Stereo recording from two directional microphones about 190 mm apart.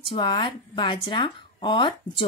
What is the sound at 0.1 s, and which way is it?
Speech, 25° left (ahead or behind).